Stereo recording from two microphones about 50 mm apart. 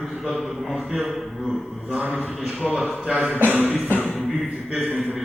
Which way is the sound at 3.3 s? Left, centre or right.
Right.